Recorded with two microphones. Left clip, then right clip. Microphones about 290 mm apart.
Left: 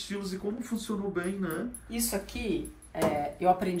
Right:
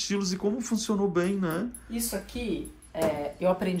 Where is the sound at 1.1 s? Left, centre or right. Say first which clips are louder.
Right 5 dB; centre.